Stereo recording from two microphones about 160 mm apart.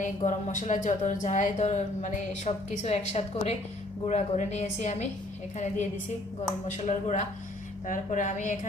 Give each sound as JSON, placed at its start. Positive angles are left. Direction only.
{"t": 0.3, "sound": "speech", "side_deg": 50}